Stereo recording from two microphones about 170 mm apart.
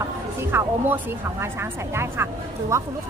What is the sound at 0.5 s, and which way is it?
A woman's voice, 10° right (ahead or behind).